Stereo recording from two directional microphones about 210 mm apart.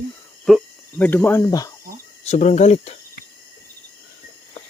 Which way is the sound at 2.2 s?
30° left (ahead or behind).